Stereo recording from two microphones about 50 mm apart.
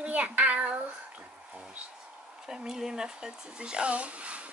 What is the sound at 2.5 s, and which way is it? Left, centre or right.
Speech, centre.